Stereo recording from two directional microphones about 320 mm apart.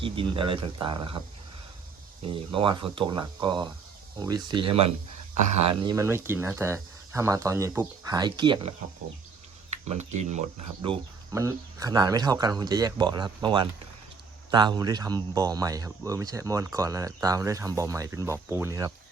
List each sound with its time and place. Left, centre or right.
0.0 s speech: centre
2.2 s speech: centre
9.6 s a sound: right
10.2 s speech: right
10.8 s speech: centre